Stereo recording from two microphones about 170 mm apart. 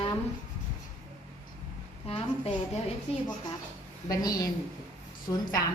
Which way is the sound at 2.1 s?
35° left (ahead or behind).